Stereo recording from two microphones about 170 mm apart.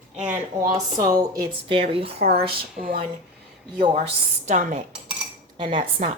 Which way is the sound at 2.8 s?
60° right (ahead or behind).